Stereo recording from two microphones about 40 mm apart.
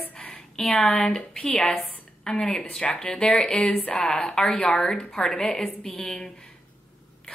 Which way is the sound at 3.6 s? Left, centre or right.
Left.